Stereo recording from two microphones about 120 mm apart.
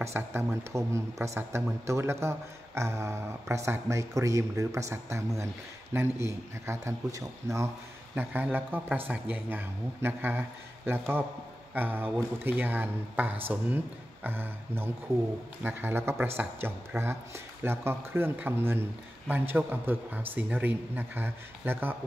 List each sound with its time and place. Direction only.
0.0 s a man's voice: 20° right (ahead or behind)
8.2 s a man's voice: 15° right (ahead or behind)